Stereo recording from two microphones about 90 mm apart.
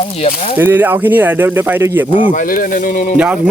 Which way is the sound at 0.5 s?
20° right (ahead or behind).